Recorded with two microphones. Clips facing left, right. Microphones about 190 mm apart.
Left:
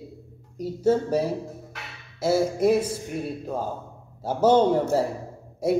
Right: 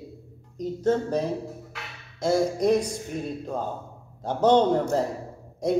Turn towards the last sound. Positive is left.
turn(degrees=5)  # may be behind; listen again after turning